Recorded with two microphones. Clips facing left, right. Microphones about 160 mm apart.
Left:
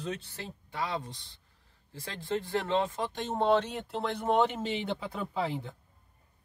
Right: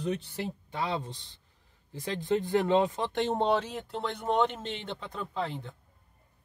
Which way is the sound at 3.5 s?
Centre (ahead or behind).